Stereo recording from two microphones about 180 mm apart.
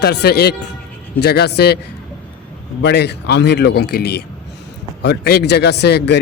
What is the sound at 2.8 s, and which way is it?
A man's voice, 70° left (ahead or behind).